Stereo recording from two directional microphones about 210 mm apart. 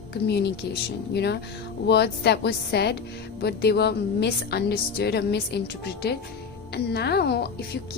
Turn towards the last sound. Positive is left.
turn(degrees=50)  # may be behind; listen again after turning